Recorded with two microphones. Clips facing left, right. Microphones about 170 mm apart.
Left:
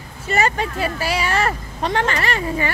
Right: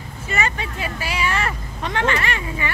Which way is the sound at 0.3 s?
40° left (ahead or behind).